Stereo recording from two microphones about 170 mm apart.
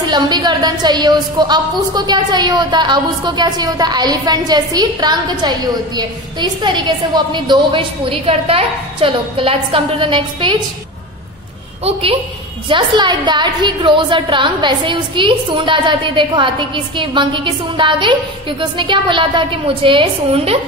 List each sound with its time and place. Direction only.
0.1 s a woman's voice: 25° right (ahead or behind)
11.8 s a woman's voice: 35° right (ahead or behind)